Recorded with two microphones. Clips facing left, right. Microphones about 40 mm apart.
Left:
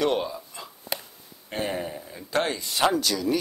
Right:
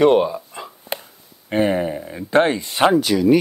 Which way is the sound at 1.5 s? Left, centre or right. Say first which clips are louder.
Right 11 dB; right.